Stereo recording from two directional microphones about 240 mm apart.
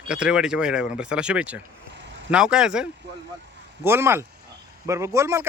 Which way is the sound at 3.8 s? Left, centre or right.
Centre.